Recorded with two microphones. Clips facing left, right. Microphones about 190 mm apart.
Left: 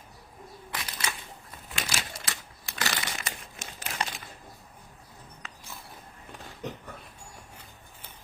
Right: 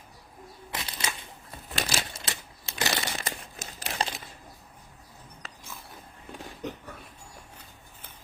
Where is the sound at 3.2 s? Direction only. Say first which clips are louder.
Right 3 dB; 35° right (ahead or behind).